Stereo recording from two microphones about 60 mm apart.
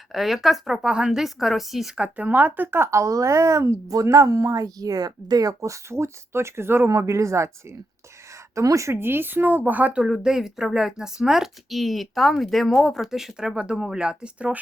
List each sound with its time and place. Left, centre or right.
0.1 s speech: centre
0.9 s speech: centre
2.0 s speech: right
2.7 s speech: right
3.0 s speech: right
3.8 s speech: right
6.9 s speech: right
9.0 s a woman's voice: right
10.0 s speech: centre